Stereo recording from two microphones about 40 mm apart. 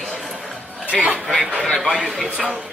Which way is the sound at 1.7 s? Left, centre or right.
Centre.